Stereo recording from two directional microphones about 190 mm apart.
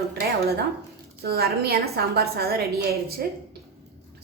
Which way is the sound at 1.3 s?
55° right (ahead or behind).